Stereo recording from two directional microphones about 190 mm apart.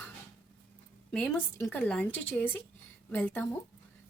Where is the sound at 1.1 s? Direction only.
10° left (ahead or behind).